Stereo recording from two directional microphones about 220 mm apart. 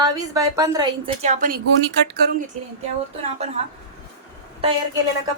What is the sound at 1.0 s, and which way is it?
Speech, 30° right (ahead or behind).